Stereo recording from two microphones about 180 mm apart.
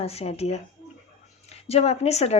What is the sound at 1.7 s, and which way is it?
Speech, 35° left (ahead or behind).